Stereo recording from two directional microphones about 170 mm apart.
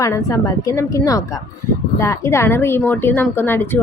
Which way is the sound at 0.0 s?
20° left (ahead or behind).